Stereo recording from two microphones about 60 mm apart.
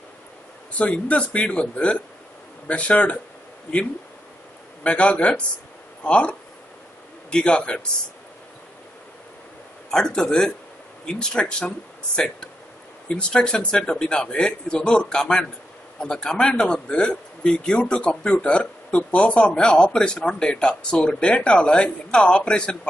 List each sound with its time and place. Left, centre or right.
0.7 s a man's voice: left
4.8 s a man's voice: centre
9.8 s speech: centre
13.1 s speech: centre